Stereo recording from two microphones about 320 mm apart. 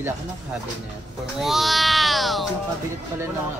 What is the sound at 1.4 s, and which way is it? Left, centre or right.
Music, centre.